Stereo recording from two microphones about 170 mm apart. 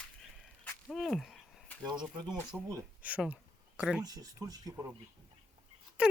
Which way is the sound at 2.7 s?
15° right (ahead or behind).